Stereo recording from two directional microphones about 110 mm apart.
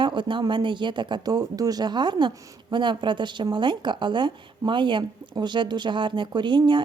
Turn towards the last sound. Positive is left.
turn(degrees=-45)  # may be behind; listen again after turning